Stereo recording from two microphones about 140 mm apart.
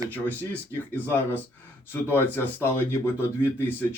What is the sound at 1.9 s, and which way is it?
Speech, 15° left (ahead or behind).